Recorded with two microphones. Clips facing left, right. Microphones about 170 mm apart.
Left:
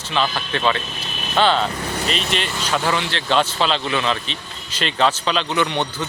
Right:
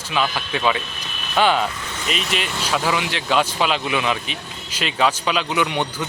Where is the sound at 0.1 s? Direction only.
10° right (ahead or behind).